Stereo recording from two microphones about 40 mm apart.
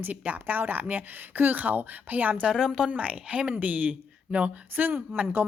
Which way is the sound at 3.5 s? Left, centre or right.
Right.